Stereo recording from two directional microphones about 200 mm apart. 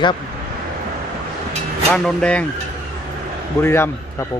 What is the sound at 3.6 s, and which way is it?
Speech, 10° left (ahead or behind).